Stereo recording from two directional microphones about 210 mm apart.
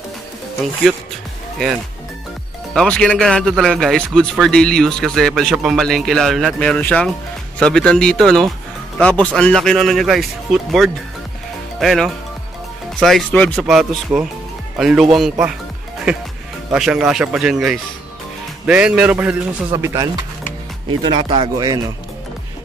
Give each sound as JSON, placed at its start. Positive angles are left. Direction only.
{"t": 2.7, "sound": "a man's voice", "side_deg": 5}
{"t": 16.7, "sound": "a man's voice", "side_deg": -5}